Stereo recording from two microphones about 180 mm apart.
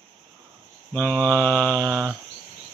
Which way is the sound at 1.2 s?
15° right (ahead or behind).